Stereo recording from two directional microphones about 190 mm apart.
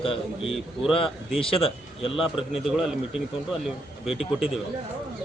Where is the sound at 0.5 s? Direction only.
Centre (ahead or behind).